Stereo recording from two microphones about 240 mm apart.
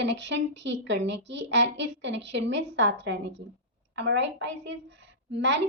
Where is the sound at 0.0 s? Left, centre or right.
Right.